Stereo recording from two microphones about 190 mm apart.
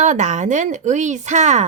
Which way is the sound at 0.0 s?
40° right (ahead or behind).